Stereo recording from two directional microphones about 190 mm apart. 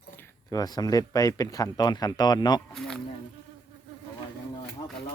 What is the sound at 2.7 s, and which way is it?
Speech, 5° left (ahead or behind).